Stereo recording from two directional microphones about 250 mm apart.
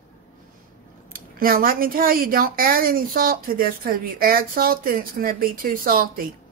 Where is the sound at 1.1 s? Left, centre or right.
Right.